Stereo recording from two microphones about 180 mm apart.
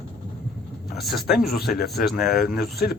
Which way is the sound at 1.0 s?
Centre (ahead or behind).